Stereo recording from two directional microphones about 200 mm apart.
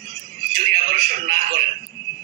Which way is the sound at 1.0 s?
45° right (ahead or behind).